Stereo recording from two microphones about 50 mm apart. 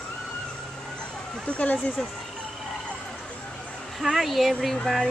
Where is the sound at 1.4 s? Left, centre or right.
Left.